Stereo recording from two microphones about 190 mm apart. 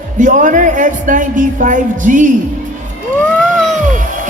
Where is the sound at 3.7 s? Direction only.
40° right (ahead or behind).